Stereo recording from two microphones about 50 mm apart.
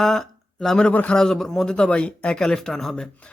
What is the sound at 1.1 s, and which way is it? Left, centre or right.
Speech, centre.